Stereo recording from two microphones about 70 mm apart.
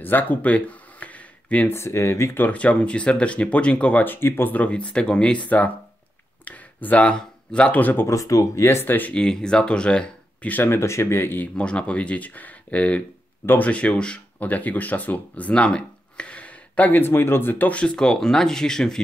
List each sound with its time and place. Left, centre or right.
0.0 s a sound: left
1.7 s speech: left
2.4 s speech: centre
4.0 s speech: left
8.1 s speech: left
8.6 s speech: left
9.1 s speech: centre
10.5 s speech: left
11.5 s speech: centre
17.7 s speech: centre